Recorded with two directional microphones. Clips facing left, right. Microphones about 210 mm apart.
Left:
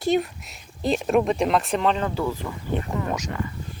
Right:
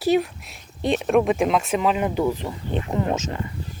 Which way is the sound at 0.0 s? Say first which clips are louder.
Right 2 dB; centre (ahead or behind).